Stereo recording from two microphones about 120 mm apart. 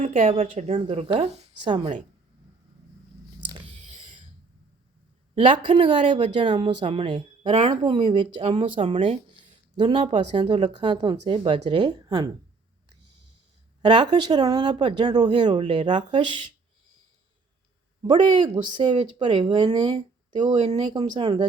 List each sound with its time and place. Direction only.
0.0 s speech: 75° right (ahead or behind)
0.9 s speech: 50° right (ahead or behind)
3.8 s a sound: 85° right
5.3 s speech: 45° right (ahead or behind)
13.8 s speech: 40° right (ahead or behind)
18.0 s speech: 40° right (ahead or behind)
20.6 s speech: 65° right (ahead or behind)
20.8 s speech: 40° right (ahead or behind)